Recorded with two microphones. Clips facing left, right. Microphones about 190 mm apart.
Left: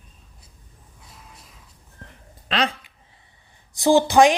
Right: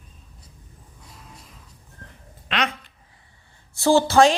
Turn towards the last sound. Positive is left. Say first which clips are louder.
# left 1 dB
turn(degrees=15)  # may be behind; listen again after turning